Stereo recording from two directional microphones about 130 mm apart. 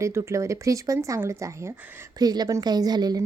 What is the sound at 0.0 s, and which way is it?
A woman's voice, 20° right (ahead or behind).